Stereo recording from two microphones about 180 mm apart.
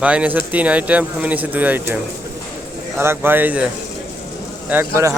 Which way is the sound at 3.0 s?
10° right (ahead or behind).